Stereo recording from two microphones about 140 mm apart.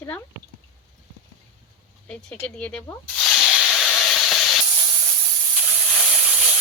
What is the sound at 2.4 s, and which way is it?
Hiss, 5° left (ahead or behind).